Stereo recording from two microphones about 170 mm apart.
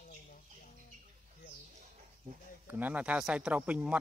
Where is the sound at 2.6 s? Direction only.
10° right (ahead or behind).